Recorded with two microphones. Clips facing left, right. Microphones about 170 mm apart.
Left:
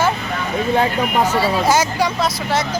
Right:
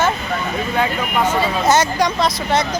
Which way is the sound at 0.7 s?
35° left (ahead or behind).